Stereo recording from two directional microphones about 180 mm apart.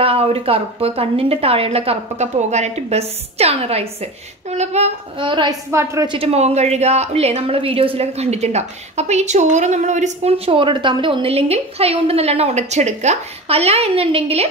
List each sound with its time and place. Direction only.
0.0 s a woman's voice: 30° right (ahead or behind); by 6.0 s 15° right (ahead or behind)
6.0 s a woman's voice: 30° right (ahead or behind)